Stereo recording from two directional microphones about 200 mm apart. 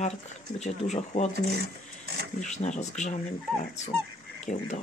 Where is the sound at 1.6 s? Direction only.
55° right (ahead or behind).